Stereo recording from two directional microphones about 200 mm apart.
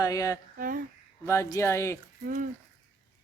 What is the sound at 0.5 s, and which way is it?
Speech, 45° right (ahead or behind).